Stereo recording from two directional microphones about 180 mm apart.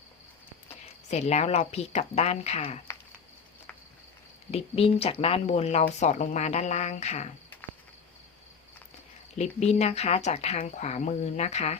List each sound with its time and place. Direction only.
0.7 s speech: 35° left (ahead or behind)
4.5 s speech: 35° left (ahead or behind)
9.4 s speech: 35° left (ahead or behind)